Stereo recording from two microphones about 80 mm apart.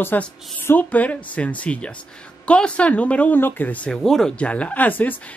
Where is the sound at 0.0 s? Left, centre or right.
Left.